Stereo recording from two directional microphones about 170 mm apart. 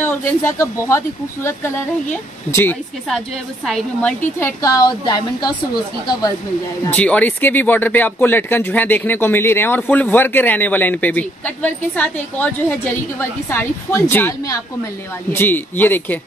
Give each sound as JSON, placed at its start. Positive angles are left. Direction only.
{"t": 0.0, "sound": "a woman's voice", "side_deg": 15}
{"t": 4.4, "sound": "a woman's voice", "side_deg": 15}
{"t": 6.9, "sound": "speech", "side_deg": 10}